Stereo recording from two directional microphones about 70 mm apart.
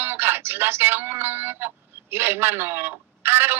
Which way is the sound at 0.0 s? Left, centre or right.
Right.